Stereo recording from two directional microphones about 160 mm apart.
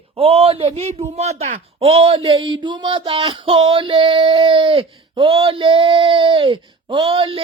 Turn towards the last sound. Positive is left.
turn(degrees=-35)  # may be behind; listen again after turning